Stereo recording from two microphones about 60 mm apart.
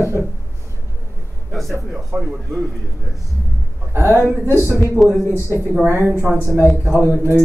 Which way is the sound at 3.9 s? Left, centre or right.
Right.